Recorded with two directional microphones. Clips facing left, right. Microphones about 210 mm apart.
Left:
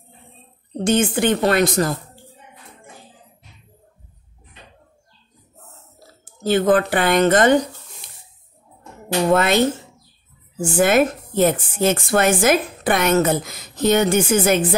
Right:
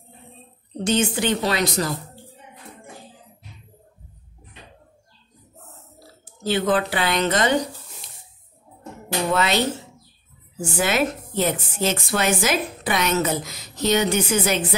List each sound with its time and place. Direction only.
0.8 s a woman's voice: 55° left (ahead or behind)
6.4 s a woman's voice: 50° left (ahead or behind)
9.3 s a woman's voice: 50° left (ahead or behind)
10.6 s a woman's voice: 50° left (ahead or behind)